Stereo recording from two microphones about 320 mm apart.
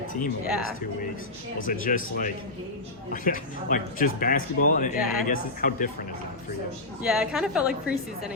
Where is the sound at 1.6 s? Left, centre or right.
Left.